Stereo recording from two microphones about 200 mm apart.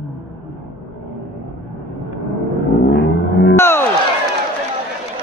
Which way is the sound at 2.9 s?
60° left (ahead or behind).